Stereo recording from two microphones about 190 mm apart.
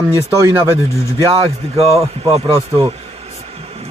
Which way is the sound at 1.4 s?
30° right (ahead or behind).